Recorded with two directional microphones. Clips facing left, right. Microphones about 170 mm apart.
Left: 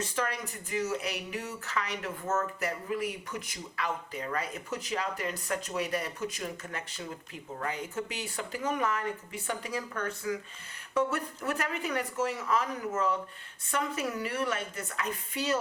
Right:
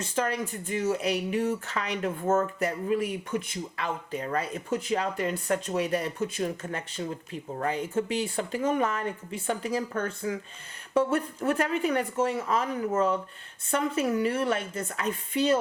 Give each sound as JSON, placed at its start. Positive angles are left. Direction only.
{"t": 0.0, "sound": "speech", "side_deg": -25}